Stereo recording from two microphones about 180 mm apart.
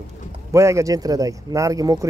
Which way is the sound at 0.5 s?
15° right (ahead or behind).